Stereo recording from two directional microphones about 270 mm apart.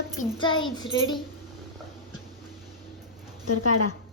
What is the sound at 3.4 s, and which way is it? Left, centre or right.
Speech, left.